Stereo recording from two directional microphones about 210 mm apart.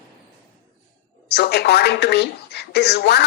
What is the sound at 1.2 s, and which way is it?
Speech, 50° left (ahead or behind).